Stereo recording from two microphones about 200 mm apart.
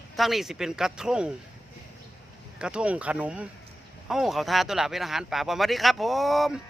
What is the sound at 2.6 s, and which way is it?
Speech, 5° right (ahead or behind).